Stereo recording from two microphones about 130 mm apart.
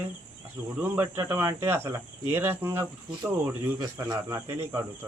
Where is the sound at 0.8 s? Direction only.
15° right (ahead or behind).